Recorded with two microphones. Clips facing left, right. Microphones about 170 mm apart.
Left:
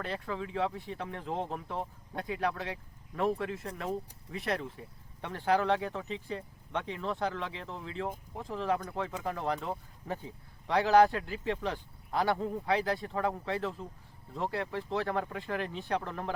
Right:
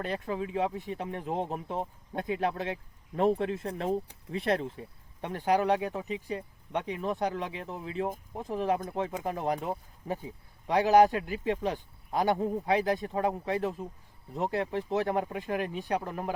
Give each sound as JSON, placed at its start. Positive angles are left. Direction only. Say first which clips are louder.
{"t": 0.0, "sound": "speech", "louder": "right 4 dB", "side_deg": -20}